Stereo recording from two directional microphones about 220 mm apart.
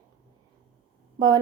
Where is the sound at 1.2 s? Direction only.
20° right (ahead or behind).